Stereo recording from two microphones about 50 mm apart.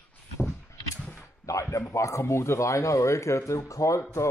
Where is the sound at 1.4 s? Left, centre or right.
Left.